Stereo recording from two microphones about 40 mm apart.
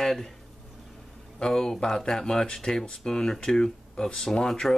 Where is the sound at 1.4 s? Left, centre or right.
Centre.